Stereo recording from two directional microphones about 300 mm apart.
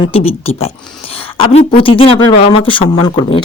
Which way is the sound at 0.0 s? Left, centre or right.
Centre.